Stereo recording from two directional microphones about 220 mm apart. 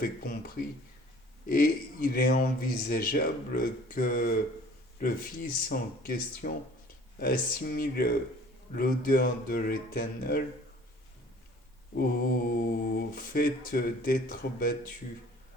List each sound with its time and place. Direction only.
0.0 s speech: 40° left (ahead or behind)
11.9 s speech: 45° left (ahead or behind)